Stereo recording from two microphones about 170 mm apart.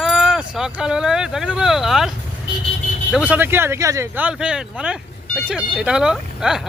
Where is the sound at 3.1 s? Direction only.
10° right (ahead or behind).